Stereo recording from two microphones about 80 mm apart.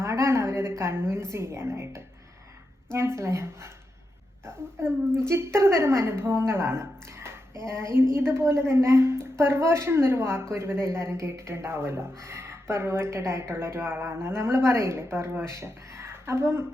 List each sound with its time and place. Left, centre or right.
0.0 s a woman's voice: right